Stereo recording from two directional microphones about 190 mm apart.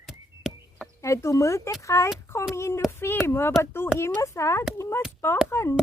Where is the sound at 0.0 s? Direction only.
Centre (ahead or behind).